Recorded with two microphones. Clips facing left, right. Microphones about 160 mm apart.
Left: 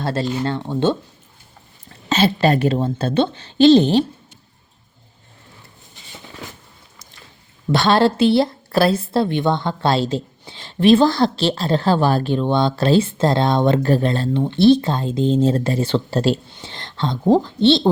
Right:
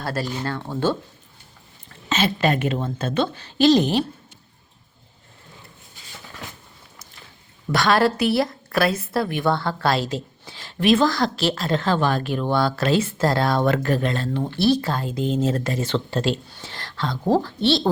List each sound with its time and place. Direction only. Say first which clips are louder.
0.0 s speech: left 5 dB; 25° left (ahead or behind)
2.0 s a woman's voice: left 5 dB; 35° left (ahead or behind)
7.7 s speech: left 3 dB; 25° left (ahead or behind)
16.5 s speech: left 1 dB; 20° left (ahead or behind)